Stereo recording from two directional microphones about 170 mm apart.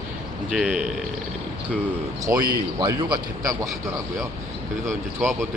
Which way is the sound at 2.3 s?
10° right (ahead or behind).